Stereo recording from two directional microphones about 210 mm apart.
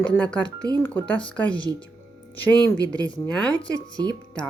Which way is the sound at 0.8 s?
10° left (ahead or behind).